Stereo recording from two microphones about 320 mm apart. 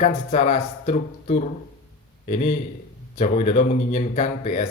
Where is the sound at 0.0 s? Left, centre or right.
Left.